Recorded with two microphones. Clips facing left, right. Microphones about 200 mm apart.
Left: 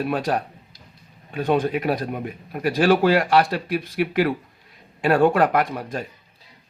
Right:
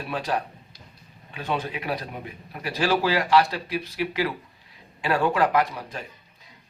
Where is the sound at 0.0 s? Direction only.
50° left (ahead or behind).